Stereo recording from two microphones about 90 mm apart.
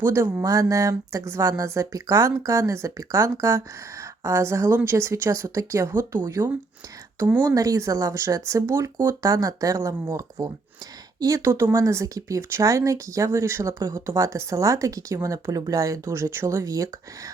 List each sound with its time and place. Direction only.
0.0 s speech: 30° right (ahead or behind)
6.1 s speech: 40° right (ahead or behind)